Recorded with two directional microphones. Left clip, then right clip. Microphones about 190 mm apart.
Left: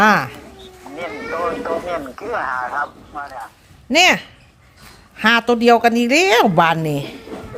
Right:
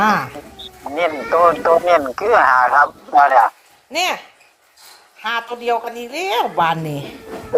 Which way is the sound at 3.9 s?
45° left (ahead or behind).